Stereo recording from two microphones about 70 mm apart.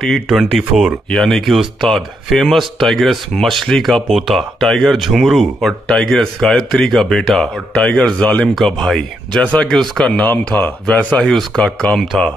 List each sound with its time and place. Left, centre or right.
0.3 s speech: centre
8.5 s speech: centre
9.4 s speech: centre
10.5 s speech: left